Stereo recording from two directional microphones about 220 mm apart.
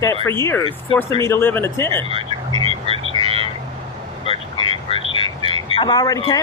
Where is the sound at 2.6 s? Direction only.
25° right (ahead or behind).